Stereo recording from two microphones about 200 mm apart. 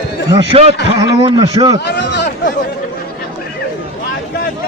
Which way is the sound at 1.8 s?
60° left (ahead or behind).